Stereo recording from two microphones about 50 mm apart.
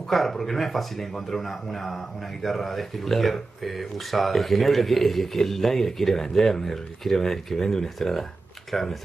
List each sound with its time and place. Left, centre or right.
0.1 s speech: centre